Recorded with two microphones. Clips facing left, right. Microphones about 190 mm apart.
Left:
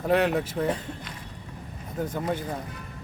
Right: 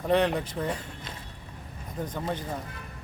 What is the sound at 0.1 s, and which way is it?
Speech, 5° left (ahead or behind).